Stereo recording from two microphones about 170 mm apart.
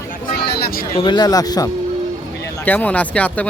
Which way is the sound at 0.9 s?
25° left (ahead or behind).